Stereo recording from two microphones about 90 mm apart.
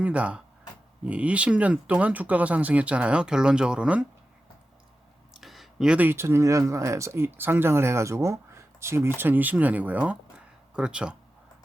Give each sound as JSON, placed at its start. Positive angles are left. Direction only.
{"t": 0.0, "sound": "speech", "side_deg": -15}
{"t": 5.3, "sound": "a sound", "side_deg": 0}
{"t": 6.0, "sound": "speech", "side_deg": -25}